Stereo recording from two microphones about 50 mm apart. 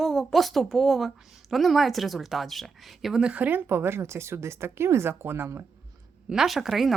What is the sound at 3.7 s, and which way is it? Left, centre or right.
Speech, right.